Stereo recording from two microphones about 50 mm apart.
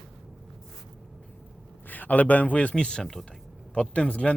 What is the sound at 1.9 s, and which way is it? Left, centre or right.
Speech, left.